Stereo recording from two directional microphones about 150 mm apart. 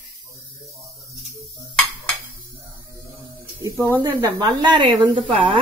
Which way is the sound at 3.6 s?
20° right (ahead or behind).